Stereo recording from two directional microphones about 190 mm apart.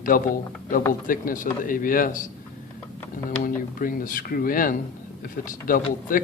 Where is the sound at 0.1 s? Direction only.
50° left (ahead or behind).